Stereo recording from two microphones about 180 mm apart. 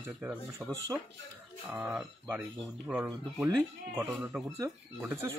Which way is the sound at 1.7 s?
10° right (ahead or behind).